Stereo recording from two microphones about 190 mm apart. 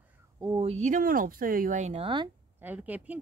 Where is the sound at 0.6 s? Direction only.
35° right (ahead or behind).